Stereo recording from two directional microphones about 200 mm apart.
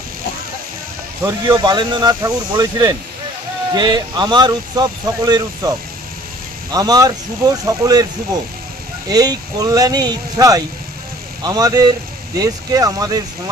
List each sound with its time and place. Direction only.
1.2 s speech: 15° right (ahead or behind)
9.0 s speech: 20° right (ahead or behind)